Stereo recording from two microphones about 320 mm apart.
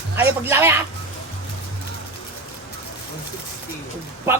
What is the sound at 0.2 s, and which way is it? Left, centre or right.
Speech, centre.